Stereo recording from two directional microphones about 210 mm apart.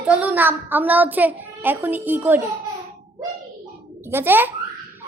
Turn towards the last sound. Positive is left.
turn(degrees=-10)  # may be behind; listen again after turning